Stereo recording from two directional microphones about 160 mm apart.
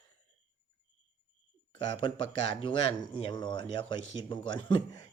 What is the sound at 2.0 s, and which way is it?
Speech, 30° left (ahead or behind).